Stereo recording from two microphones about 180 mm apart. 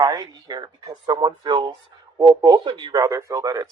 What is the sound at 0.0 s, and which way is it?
Speech, 25° right (ahead or behind).